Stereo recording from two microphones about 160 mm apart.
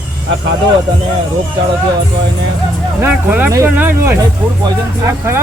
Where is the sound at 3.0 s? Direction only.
10° right (ahead or behind).